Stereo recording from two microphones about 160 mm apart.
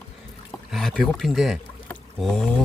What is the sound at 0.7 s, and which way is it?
Speech, centre (ahead or behind).